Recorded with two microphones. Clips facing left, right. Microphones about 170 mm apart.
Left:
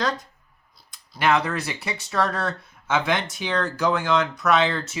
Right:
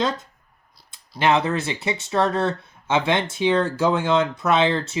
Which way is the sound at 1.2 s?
25° right (ahead or behind).